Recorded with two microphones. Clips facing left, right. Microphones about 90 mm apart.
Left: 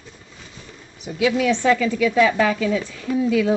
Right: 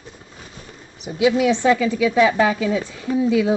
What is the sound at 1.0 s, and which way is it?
A woman's voice, 20° right (ahead or behind).